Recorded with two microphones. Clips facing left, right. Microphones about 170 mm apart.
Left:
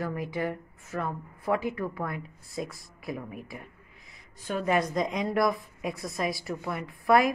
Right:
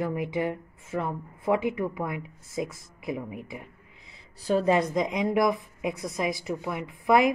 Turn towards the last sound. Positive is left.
turn(degrees=-20)  # may be behind; listen again after turning